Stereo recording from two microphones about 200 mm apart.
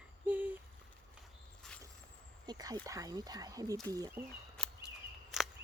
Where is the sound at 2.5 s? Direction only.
20° right (ahead or behind).